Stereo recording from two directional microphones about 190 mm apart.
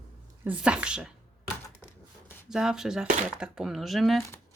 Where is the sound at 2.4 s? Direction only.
5° right (ahead or behind).